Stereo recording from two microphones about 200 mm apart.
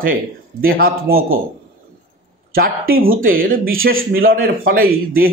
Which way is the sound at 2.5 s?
45° right (ahead or behind).